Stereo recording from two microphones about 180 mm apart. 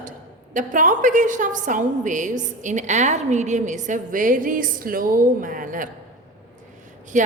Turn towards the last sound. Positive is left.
turn(degrees=-45)  # may be behind; listen again after turning